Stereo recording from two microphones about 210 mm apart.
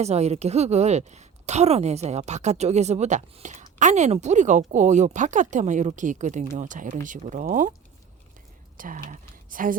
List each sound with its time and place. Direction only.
0.0 s speech: 30° right (ahead or behind)
8.8 s speech: 40° right (ahead or behind)